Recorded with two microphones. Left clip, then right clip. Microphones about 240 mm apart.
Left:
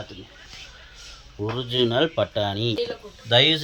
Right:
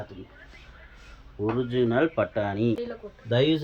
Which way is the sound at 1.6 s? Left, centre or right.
Left.